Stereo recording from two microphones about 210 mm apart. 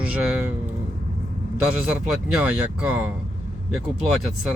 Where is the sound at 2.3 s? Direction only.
5° right (ahead or behind).